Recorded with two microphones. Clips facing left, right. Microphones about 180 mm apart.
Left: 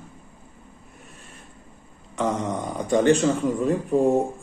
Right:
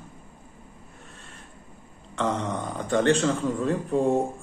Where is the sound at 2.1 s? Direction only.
10° left (ahead or behind).